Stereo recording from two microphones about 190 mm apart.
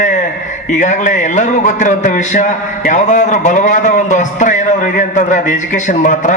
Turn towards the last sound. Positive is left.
turn(degrees=45)  # may be behind; listen again after turning